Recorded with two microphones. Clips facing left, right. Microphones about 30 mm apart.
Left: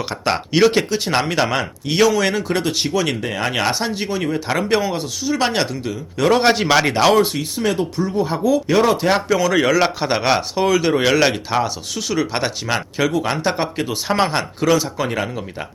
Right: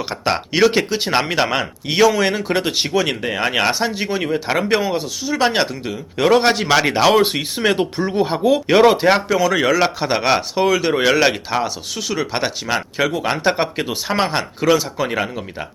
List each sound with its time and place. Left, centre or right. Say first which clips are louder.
0.0 s speech: even; centre
0.9 s speech: right 1 dB; centre
3.7 s speech: right 2 dB; centre
4.1 s speech: right 1 dB; centre
4.9 s speech: right 1 dB; centre
5.5 s speech: right 2 dB; centre
7.2 s speech: right 1 dB; right
7.7 s speech: right 2 dB; right
8.8 s speech: right 7 dB; right
9.1 s speech: even; centre
13.9 s speech: left 3 dB; centre